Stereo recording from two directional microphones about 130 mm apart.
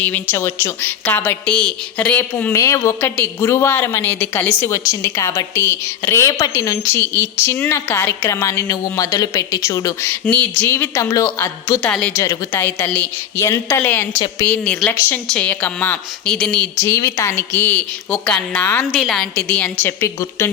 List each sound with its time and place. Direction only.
0.0 s a woman's voice: 15° left (ahead or behind)
2.6 s a woman's voice: 25° left (ahead or behind)
10.6 s a woman's voice: 20° left (ahead or behind); by 16.6 s 5° left (ahead or behind)
16.8 s a woman's voice: 20° left (ahead or behind)
18.1 s a woman's voice: 5° left (ahead or behind)
18.9 s a woman's voice: centre (ahead or behind)
19.8 s a woman's voice: 20° left (ahead or behind)